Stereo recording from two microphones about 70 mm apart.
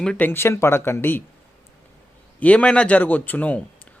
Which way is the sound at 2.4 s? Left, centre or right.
Centre.